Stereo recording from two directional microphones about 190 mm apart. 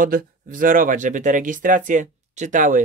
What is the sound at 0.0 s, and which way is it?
Speech, 45° right (ahead or behind).